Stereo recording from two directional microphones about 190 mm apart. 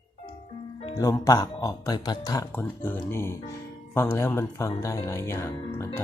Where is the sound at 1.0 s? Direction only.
15° left (ahead or behind).